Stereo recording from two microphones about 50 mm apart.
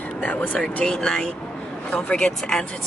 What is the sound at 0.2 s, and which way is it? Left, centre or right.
Speech, left.